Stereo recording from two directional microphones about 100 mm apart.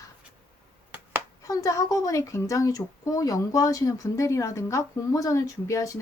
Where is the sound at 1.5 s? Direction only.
35° left (ahead or behind).